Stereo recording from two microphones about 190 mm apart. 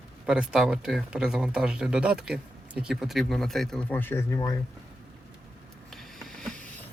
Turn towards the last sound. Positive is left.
turn(degrees=5)  # may be behind; listen again after turning